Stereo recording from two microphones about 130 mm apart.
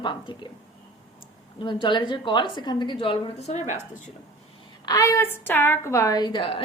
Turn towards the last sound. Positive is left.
turn(degrees=40)  # may be behind; listen again after turning